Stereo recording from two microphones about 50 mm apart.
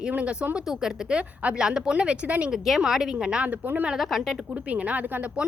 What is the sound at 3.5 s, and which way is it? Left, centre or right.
Speech, right.